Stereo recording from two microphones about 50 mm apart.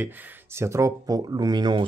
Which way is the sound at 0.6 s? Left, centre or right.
Right.